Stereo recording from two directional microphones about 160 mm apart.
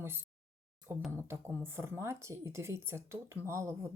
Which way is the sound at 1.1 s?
15° right (ahead or behind).